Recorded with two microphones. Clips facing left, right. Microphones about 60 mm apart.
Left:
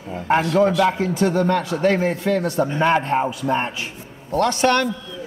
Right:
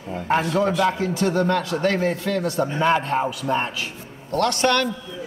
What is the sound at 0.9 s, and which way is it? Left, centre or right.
A man's voice, left.